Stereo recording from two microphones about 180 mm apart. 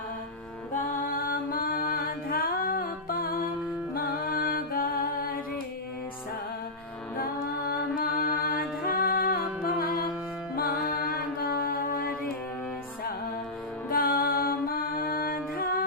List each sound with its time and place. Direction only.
0.7 s music: 50° left (ahead or behind)
7.9 s music: 55° left (ahead or behind)
11.4 s mantra: 55° left (ahead or behind)
13.9 s music: 50° left (ahead or behind)